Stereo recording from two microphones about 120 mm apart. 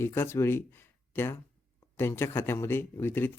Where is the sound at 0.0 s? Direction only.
20° left (ahead or behind).